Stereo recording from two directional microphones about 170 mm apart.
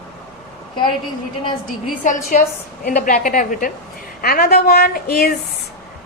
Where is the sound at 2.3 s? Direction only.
55° left (ahead or behind).